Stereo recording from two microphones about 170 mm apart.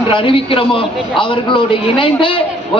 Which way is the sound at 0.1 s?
30° left (ahead or behind).